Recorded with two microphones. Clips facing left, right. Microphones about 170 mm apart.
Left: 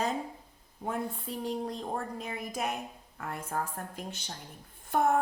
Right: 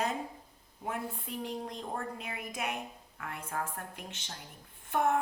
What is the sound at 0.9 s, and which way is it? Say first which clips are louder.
A woman's voice: left 3 dB; 35° left (ahead or behind).